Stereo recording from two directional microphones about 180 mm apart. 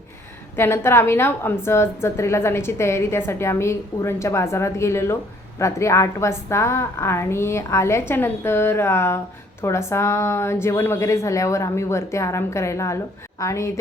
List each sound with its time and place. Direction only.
0.5 s a woman's voice: 15° left (ahead or behind)